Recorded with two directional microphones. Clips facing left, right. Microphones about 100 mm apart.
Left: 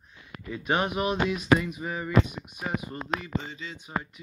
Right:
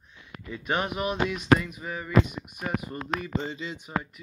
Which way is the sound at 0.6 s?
20° left (ahead or behind).